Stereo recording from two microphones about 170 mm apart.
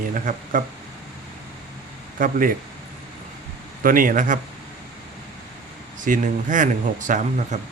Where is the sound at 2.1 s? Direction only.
55° right (ahead or behind).